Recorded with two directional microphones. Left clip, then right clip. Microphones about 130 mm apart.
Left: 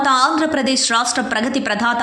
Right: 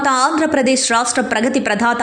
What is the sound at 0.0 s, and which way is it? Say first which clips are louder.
A woman's voice: even; 25° right (ahead or behind).